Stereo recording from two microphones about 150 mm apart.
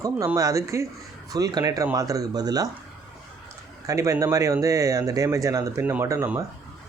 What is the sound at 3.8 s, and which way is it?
Speech, 20° right (ahead or behind).